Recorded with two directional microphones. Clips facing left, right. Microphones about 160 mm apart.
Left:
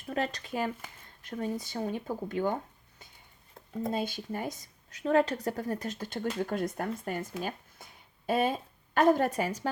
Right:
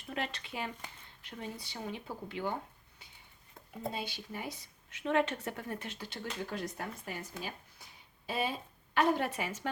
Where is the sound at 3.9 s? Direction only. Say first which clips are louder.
Left 10 dB; 45° left (ahead or behind).